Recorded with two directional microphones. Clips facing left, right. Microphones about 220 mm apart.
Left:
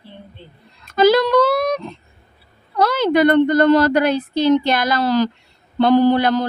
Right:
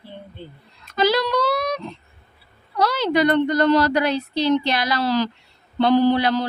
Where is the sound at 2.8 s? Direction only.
50° left (ahead or behind).